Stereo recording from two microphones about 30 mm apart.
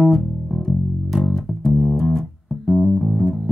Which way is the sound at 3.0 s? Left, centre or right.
Centre.